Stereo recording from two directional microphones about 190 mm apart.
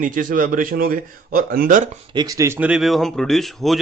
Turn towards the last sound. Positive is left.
turn(degrees=0)  # may be behind; listen again after turning